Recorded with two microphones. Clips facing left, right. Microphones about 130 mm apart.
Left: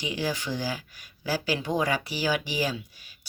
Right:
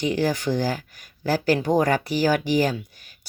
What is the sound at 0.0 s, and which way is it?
Speech, 50° right (ahead or behind).